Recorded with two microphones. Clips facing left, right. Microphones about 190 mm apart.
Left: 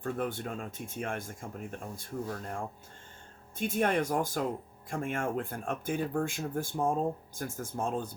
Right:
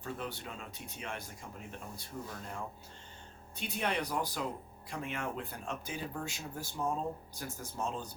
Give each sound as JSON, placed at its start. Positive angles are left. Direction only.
{"t": 0.0, "sound": "speech", "side_deg": 55}